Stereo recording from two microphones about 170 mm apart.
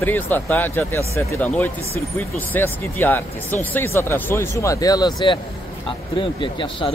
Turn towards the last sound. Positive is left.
turn(degrees=30)  # may be behind; listen again after turning